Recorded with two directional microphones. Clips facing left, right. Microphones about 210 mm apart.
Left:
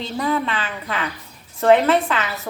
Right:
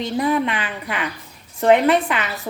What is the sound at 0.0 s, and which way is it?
A woman's voice, 15° right (ahead or behind).